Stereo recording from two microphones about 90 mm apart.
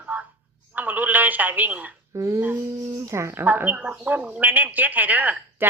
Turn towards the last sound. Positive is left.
turn(degrees=-20)  # may be behind; listen again after turning